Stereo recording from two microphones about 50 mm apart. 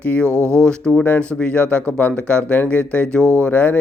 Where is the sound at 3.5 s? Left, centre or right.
Left.